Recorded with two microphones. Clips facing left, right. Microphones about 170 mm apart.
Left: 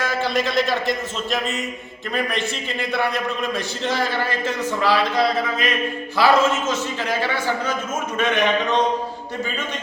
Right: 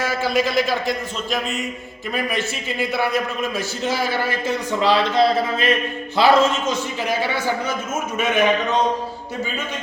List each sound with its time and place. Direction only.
0.0 s a man's voice: 5° right (ahead or behind)